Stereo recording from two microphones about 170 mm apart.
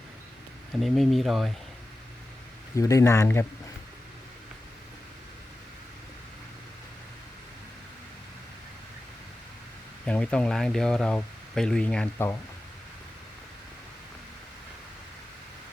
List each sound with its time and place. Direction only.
0.8 s speech: centre (ahead or behind)
2.7 s speech: 20° left (ahead or behind)
10.1 s speech: 5° left (ahead or behind)